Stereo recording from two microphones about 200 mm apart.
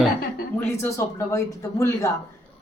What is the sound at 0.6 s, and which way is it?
A man's voice, 10° left (ahead or behind).